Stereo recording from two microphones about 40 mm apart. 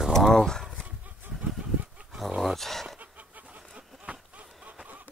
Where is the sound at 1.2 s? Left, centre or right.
Right.